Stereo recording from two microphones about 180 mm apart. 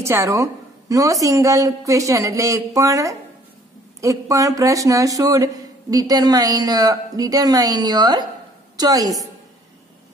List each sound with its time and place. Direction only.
0.0 s a woman's voice: 15° right (ahead or behind)